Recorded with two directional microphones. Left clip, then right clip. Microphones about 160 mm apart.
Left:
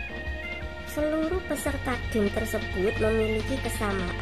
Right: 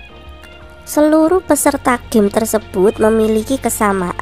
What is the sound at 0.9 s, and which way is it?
A woman's voice, 50° right (ahead or behind).